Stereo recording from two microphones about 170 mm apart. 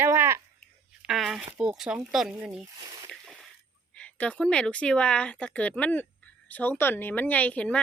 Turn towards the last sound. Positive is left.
turn(degrees=5)  # may be behind; listen again after turning